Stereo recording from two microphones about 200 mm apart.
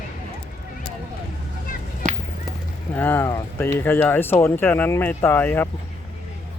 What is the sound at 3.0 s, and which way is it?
Speech, 10° left (ahead or behind).